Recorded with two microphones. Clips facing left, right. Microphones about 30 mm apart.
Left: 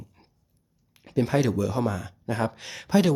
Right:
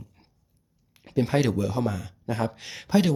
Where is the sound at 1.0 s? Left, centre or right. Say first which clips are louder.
Even; centre.